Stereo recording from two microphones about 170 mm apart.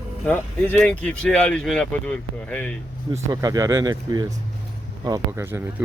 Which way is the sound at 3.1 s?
20° right (ahead or behind).